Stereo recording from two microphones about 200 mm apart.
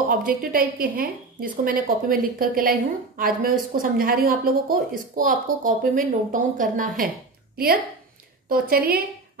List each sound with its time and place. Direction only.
0.1 s speech: 45° right (ahead or behind)